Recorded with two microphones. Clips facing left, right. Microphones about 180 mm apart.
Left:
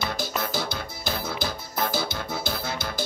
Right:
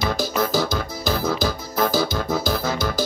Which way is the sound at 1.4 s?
45° right (ahead or behind).